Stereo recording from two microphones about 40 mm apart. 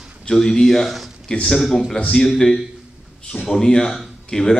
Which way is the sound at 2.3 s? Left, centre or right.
Centre.